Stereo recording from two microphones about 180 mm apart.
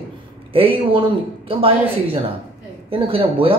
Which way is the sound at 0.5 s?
30° right (ahead or behind).